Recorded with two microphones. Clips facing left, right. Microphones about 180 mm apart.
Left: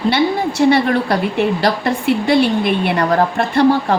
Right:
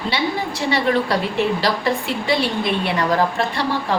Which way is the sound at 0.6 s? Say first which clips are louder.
Left 6 dB; 55° left (ahead or behind).